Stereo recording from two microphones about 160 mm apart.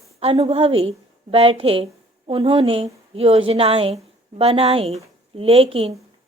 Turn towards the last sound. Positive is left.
turn(degrees=-35)  # may be behind; listen again after turning